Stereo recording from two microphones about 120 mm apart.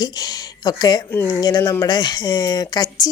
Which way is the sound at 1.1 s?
20° left (ahead or behind).